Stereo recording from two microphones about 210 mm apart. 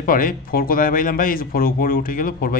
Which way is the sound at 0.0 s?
40° left (ahead or behind).